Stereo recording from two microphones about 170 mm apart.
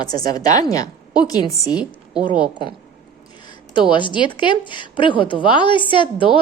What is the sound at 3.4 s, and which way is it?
A woman's voice, 30° left (ahead or behind).